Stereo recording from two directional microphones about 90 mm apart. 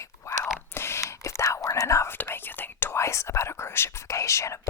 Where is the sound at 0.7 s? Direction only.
30° left (ahead or behind).